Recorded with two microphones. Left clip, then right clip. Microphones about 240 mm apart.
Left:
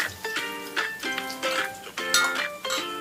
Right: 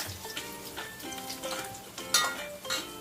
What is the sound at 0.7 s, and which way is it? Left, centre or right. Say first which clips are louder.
Music: left 14 dB; left.